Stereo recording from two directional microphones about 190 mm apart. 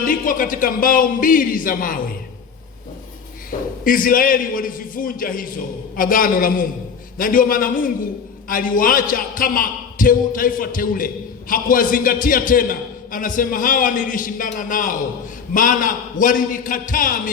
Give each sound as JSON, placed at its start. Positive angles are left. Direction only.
{"t": 0.0, "sound": "a man's voice", "side_deg": 45}
{"t": 3.5, "sound": "a man's voice", "side_deg": 45}